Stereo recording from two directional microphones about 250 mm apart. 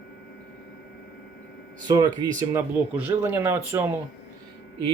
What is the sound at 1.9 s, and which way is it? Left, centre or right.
Speech, centre.